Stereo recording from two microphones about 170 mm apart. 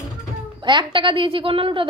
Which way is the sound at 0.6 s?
25° right (ahead or behind).